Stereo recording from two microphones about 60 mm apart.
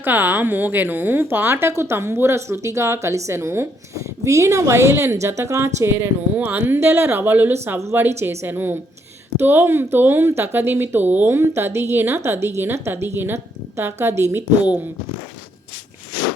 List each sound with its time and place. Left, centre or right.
0.0 s a woman's voice: right
5.5 s a woman's voice: right
6.3 s speech: right
6.7 s a woman's voice: right